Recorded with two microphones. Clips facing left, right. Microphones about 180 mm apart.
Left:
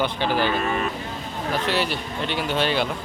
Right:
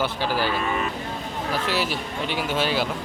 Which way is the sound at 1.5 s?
5° right (ahead or behind).